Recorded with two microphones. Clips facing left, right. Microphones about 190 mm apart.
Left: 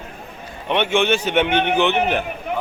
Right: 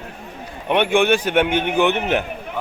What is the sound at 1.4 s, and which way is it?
Speech, 60° left (ahead or behind).